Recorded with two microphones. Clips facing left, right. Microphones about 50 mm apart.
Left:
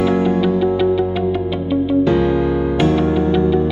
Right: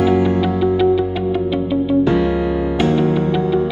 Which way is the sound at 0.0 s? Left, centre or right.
Centre.